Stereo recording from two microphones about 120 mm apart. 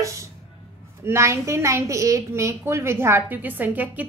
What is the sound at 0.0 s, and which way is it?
Music, 25° right (ahead or behind).